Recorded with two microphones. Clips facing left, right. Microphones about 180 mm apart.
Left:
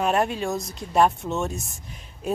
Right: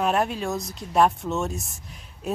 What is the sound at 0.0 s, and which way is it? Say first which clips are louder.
Speech: left 1 dB; centre (ahead or behind).